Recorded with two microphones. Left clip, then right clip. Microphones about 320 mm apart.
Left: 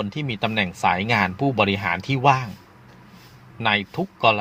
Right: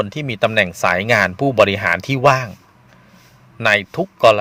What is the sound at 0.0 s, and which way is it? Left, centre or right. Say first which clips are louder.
Speech: right 8 dB; right.